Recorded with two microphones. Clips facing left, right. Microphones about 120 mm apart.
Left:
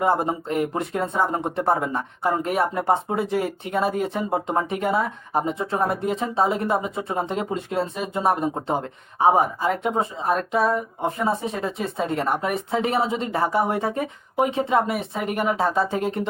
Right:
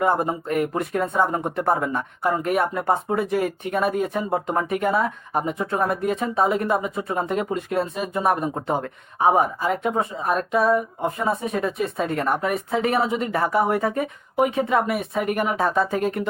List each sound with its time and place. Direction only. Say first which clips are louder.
0.0 s speech: even; 25° left (ahead or behind)